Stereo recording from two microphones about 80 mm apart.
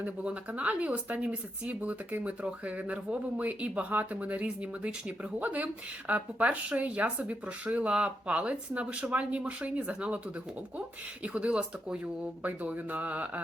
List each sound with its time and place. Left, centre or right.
0.0 s speech: centre